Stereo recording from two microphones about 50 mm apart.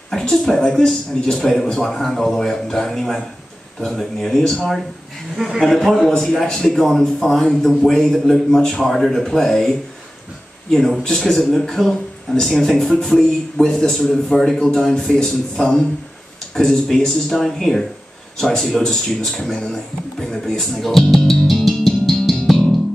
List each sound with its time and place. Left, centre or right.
0.1 s a man's voice: centre
4.4 s speech: centre
5.4 s a man's voice: centre